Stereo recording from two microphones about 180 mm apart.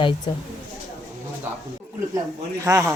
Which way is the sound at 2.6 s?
15° right (ahead or behind).